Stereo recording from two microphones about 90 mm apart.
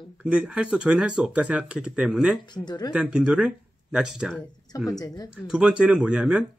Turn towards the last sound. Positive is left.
turn(degrees=-10)  # may be behind; listen again after turning